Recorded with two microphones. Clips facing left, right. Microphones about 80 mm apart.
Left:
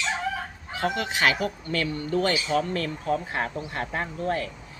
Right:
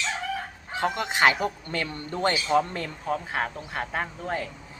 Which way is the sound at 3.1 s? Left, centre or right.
Centre.